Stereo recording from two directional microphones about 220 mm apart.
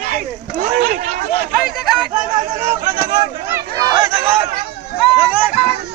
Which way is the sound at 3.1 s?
15° right (ahead or behind).